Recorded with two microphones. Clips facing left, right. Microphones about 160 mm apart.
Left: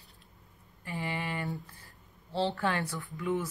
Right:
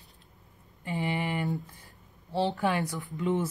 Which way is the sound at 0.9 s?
20° right (ahead or behind).